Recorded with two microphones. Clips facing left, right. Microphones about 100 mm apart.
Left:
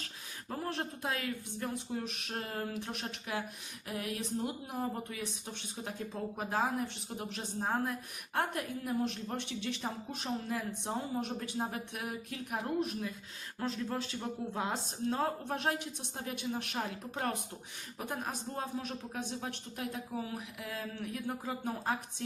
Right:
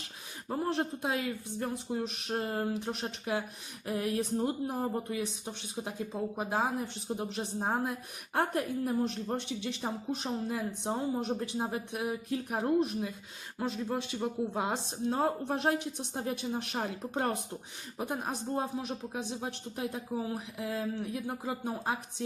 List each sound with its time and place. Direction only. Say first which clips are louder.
0.4 s speech: right 6 dB; 20° right (ahead or behind)
5.1 s speech: right 6 dB; 20° right (ahead or behind)
8.4 s speech: right 4 dB; 35° right (ahead or behind)
9.3 s speech: right 3 dB; 20° right (ahead or behind)